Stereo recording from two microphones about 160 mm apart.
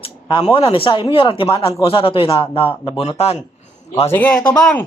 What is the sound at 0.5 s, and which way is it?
A man's voice, 35° left (ahead or behind).